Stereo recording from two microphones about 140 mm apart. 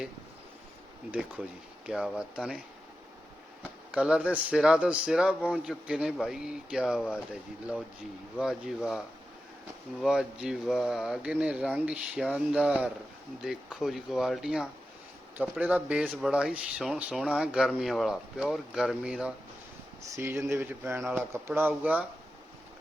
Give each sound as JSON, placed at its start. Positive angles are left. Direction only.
{"t": 1.9, "sound": "speech", "side_deg": -5}
{"t": 3.9, "sound": "speech", "side_deg": -5}
{"t": 8.4, "sound": "speech", "side_deg": -5}
{"t": 20.1, "sound": "speech", "side_deg": -20}